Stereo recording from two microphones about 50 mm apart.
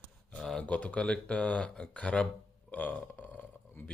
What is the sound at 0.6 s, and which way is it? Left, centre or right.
Speech, left.